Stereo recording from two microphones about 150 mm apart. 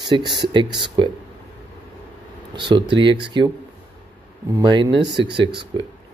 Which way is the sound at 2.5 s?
30° right (ahead or behind).